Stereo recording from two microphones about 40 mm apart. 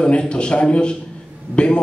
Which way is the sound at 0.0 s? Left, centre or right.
Left.